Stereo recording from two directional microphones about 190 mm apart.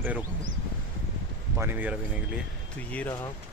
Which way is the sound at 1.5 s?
10° right (ahead or behind).